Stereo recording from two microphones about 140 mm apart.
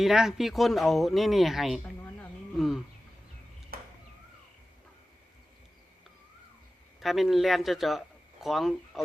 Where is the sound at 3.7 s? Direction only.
90° right.